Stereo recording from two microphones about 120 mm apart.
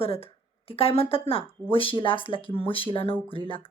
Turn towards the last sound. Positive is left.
turn(degrees=50)  # may be behind; listen again after turning